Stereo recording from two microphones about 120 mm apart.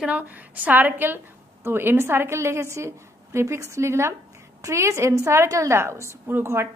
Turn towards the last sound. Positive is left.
turn(degrees=-20)  # may be behind; listen again after turning